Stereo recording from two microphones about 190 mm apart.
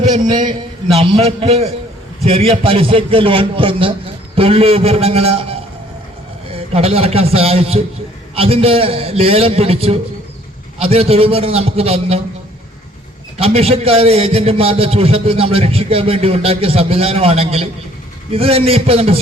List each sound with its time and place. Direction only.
0.3 s a man's voice: 35° right (ahead or behind)
13.4 s a man's voice: 30° right (ahead or behind)